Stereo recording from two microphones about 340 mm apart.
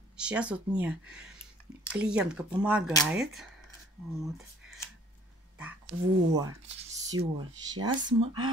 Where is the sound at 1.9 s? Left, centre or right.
Centre.